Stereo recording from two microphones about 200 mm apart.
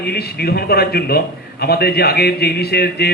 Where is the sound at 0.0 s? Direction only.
50° left (ahead or behind).